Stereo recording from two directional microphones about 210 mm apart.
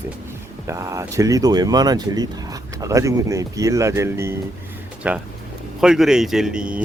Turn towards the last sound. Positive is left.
turn(degrees=-5)  # may be behind; listen again after turning